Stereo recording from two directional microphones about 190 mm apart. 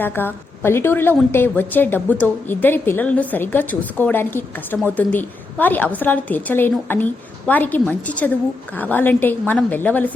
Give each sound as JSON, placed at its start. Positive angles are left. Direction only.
{"t": 0.0, "sound": "a woman's voice", "side_deg": 10}